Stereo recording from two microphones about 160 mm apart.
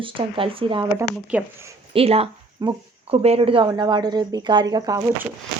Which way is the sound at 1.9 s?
40° right (ahead or behind).